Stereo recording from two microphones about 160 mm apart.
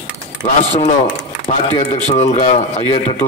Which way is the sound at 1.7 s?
40° left (ahead or behind).